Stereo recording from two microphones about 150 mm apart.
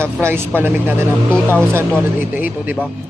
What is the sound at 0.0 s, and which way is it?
Speech, 15° right (ahead or behind).